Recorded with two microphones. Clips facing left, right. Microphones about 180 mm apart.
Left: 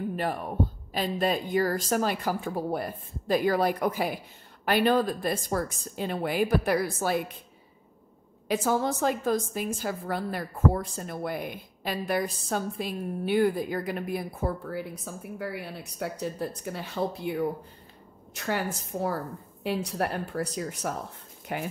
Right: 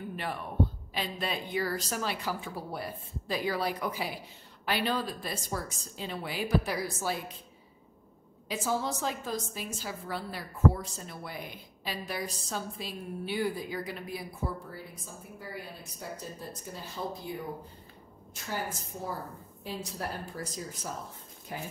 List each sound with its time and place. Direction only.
0.1 s a woman's voice: 45° left (ahead or behind); by 7.2 s 60° left (ahead or behind)
8.5 s a woman's voice: 55° left (ahead or behind); by 21.7 s 70° left (ahead or behind)